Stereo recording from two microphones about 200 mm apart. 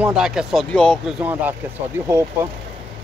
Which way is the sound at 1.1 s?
10° right (ahead or behind).